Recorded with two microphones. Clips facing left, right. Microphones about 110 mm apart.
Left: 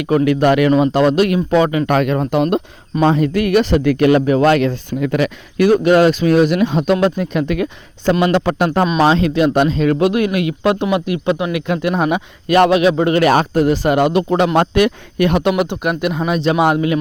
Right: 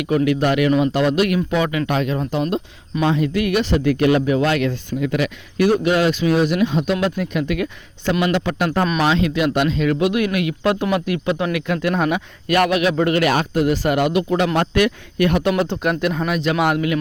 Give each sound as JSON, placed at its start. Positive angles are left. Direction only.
{"t": 0.0, "sound": "speech", "side_deg": 45}
{"t": 0.7, "sound": "speech", "side_deg": 35}
{"t": 1.9, "sound": "speech", "side_deg": 60}
{"t": 2.9, "sound": "speech", "side_deg": 40}
{"t": 3.8, "sound": "speech", "side_deg": 70}
{"t": 4.1, "sound": "speech", "side_deg": 45}
{"t": 6.9, "sound": "speech", "side_deg": 35}
{"t": 8.7, "sound": "speech", "side_deg": 20}
{"t": 9.0, "sound": "speech", "side_deg": 35}
{"t": 13.8, "sound": "speech", "side_deg": 25}
{"t": 16.2, "sound": "speech", "side_deg": 30}